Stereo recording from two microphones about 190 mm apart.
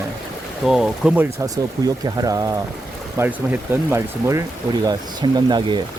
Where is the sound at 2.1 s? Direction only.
20° right (ahead or behind).